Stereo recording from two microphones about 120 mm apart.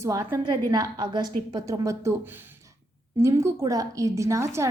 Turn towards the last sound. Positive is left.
turn(degrees=-25)  # may be behind; listen again after turning